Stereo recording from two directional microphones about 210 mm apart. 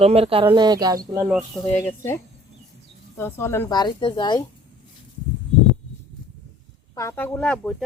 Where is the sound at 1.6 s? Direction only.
5° left (ahead or behind).